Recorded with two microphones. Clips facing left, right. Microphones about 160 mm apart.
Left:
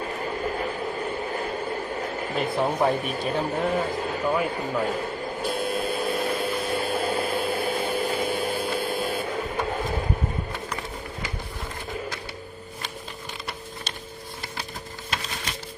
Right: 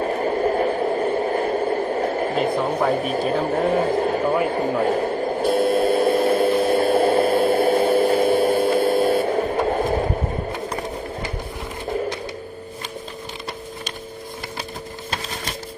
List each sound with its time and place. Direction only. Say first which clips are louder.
0.0 s radio: right 9 dB; 40° right (ahead or behind)
3.0 s speech: right 6 dB; 40° right (ahead or behind)
4.4 s radio: right 6 dB; 45° right (ahead or behind)
6.2 s a sound: right 10 dB; 50° right (ahead or behind)